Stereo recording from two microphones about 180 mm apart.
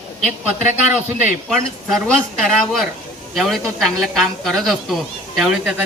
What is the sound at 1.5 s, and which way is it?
Speech, centre (ahead or behind).